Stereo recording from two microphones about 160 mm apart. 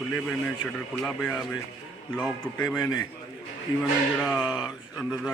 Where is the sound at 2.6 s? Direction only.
15° left (ahead or behind).